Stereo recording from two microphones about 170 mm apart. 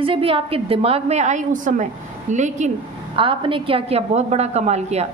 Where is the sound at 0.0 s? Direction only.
30° right (ahead or behind).